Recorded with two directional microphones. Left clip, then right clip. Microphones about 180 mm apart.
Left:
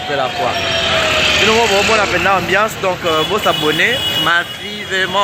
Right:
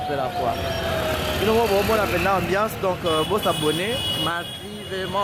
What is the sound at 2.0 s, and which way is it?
Speech, 5° right (ahead or behind).